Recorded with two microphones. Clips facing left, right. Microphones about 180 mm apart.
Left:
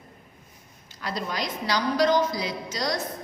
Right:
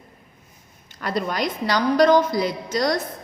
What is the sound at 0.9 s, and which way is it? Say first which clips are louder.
A woman's voice: right 6 dB; 55° right (ahead or behind).